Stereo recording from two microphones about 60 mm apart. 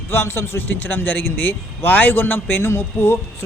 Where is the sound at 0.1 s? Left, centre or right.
Left.